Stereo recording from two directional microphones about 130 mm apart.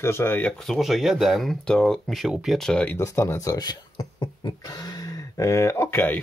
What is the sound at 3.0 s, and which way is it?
Speech, 25° left (ahead or behind).